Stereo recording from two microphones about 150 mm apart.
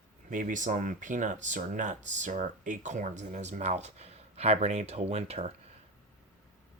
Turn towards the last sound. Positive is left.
turn(degrees=-45)  # may be behind; listen again after turning